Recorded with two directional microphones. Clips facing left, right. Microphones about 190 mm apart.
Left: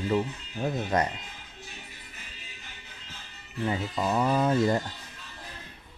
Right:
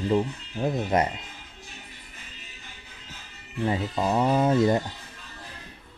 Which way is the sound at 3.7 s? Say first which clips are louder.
Right 3 dB; 35° right (ahead or behind).